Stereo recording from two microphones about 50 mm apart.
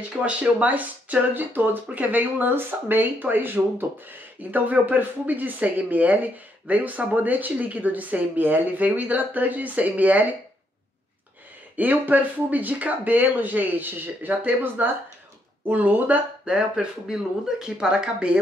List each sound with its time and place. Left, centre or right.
0.2 s speech: right
11.7 s speech: right
16.4 s speech: centre